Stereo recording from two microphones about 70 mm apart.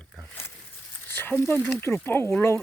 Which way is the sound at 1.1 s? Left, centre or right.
Left.